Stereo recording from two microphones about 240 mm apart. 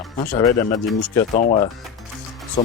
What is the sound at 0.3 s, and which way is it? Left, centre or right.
Speech, centre.